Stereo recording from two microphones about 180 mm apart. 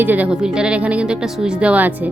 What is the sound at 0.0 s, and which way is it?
Speech, 10° right (ahead or behind).